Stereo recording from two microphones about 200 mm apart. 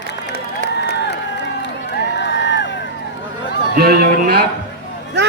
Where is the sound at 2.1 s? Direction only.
60° left (ahead or behind).